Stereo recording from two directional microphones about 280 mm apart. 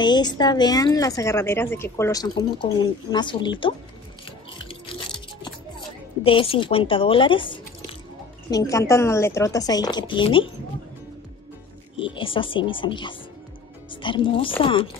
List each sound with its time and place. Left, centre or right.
0.0 s a woman's voice: centre
4.6 s chewing: centre
6.2 s a woman's voice: centre
12.0 s a woman's voice: centre